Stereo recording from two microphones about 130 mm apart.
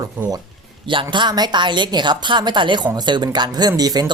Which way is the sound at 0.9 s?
40° right (ahead or behind).